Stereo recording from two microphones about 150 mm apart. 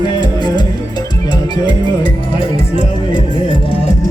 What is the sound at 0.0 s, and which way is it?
Music, 30° left (ahead or behind).